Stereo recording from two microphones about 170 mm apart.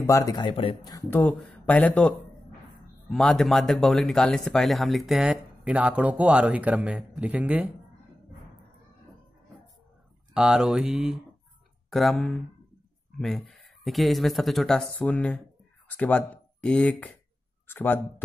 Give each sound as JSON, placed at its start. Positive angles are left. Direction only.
{"t": 0.0, "sound": "speech", "side_deg": 20}
{"t": 0.9, "sound": "speech", "side_deg": 10}
{"t": 10.3, "sound": "speech", "side_deg": -5}